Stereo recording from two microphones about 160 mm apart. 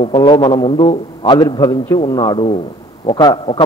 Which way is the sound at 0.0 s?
30° left (ahead or behind).